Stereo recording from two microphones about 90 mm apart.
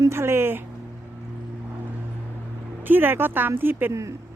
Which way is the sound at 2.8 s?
20° right (ahead or behind).